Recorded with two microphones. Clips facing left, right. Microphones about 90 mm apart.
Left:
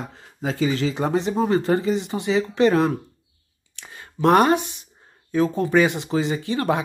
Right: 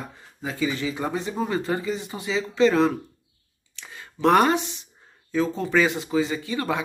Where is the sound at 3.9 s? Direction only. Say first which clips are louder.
Left 2 dB; 45° left (ahead or behind); by 6.3 s 60° left (ahead or behind).